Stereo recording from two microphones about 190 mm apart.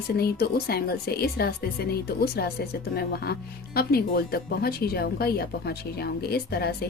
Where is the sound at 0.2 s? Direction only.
55° left (ahead or behind).